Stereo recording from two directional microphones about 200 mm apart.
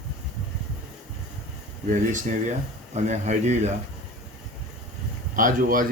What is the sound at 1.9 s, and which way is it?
Speech, 40° right (ahead or behind).